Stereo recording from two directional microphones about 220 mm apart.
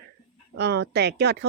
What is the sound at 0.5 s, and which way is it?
Speech, 50° right (ahead or behind).